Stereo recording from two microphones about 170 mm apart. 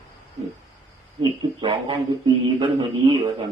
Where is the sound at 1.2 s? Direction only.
30° right (ahead or behind).